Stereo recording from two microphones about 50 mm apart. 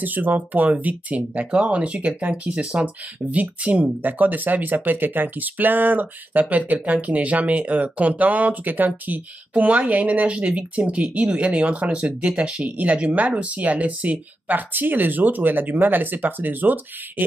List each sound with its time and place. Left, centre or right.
0.0 s speech: right; by 12.6 s centre
12.7 s speech: right